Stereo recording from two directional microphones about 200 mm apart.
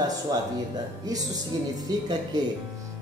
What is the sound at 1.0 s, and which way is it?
Speech, 20° right (ahead or behind).